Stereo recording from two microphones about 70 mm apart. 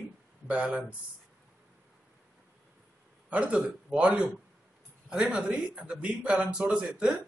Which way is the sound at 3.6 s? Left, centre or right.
Centre.